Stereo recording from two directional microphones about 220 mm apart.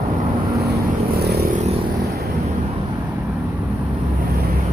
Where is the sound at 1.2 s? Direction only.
45° right (ahead or behind).